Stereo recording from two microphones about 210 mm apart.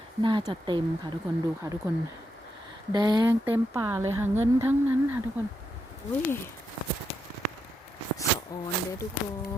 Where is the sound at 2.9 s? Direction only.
20° right (ahead or behind).